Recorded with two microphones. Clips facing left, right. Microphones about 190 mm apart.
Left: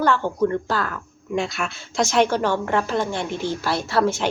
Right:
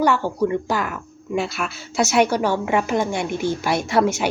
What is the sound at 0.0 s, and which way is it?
Speech, 10° right (ahead or behind).